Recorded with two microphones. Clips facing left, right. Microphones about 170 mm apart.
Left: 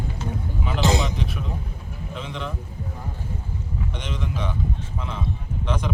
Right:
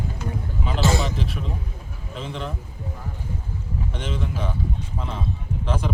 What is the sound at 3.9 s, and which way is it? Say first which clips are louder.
Speech: right 3 dB; 5° right (ahead or behind).